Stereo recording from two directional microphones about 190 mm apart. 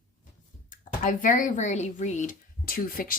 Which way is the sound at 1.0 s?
45° left (ahead or behind).